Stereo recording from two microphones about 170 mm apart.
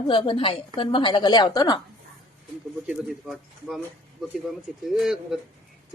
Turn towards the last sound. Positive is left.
turn(degrees=0)  # may be behind; listen again after turning